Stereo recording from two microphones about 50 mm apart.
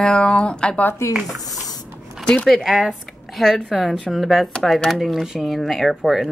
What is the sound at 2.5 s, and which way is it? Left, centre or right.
Speech, centre.